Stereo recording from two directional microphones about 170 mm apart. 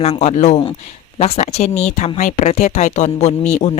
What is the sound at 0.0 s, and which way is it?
Speech, 40° left (ahead or behind).